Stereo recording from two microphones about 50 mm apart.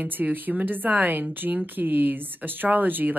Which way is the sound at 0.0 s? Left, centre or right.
Right.